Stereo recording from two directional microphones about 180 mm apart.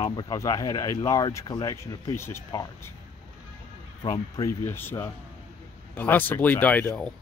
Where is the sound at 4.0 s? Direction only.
20° left (ahead or behind).